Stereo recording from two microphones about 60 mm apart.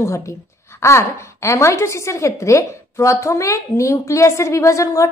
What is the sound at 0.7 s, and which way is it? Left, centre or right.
A woman's voice, left.